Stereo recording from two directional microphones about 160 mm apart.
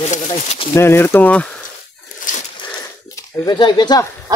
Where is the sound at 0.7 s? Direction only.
15° left (ahead or behind).